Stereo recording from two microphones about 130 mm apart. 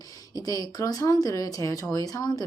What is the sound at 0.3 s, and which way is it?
Speech, 30° left (ahead or behind).